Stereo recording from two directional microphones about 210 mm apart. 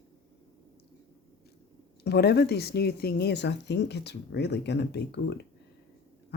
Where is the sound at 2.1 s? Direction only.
50° left (ahead or behind).